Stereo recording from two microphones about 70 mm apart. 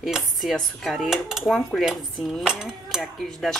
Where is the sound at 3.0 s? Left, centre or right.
Centre.